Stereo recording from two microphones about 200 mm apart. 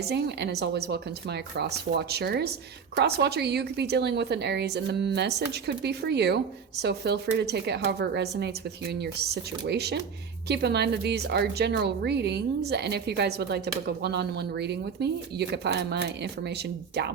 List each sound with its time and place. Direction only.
0.0 s a woman's voice: 55° right (ahead or behind)